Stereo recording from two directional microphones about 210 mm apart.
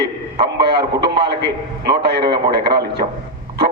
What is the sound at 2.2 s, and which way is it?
Speech, 25° right (ahead or behind).